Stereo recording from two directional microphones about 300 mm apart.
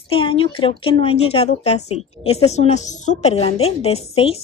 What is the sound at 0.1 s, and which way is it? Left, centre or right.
A woman's voice, centre.